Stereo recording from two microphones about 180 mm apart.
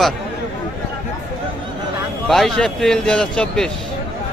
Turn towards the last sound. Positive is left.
turn(degrees=5)  # may be behind; listen again after turning